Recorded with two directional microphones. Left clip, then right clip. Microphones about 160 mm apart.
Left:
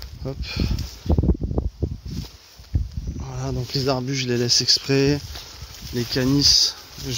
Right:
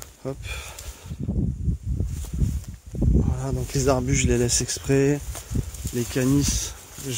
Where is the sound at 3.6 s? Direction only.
15° right (ahead or behind).